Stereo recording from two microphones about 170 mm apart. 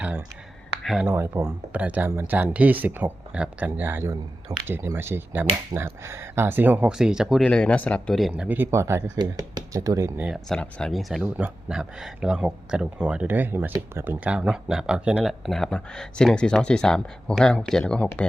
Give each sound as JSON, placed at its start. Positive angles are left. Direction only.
{"t": 0.0, "sound": "a sound", "side_deg": -5}
{"t": 1.0, "sound": "speech", "side_deg": -15}
{"t": 8.3, "sound": "speech", "side_deg": -10}
{"t": 10.2, "sound": "speech", "side_deg": 0}